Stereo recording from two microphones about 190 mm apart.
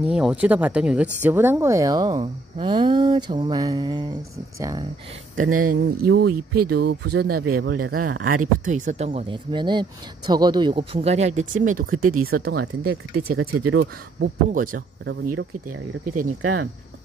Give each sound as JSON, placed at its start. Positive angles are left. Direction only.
{"t": 0.0, "sound": "speech", "side_deg": -5}
{"t": 2.5, "sound": "a sound", "side_deg": -25}
{"t": 5.4, "sound": "speech", "side_deg": -45}
{"t": 14.5, "sound": "speech", "side_deg": -45}
{"t": 16.2, "sound": "speech", "side_deg": -45}